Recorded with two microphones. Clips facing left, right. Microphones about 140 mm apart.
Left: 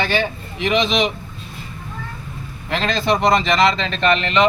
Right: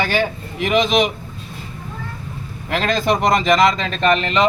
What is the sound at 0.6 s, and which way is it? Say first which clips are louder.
Speech: right 2 dB; 50° right (ahead or behind).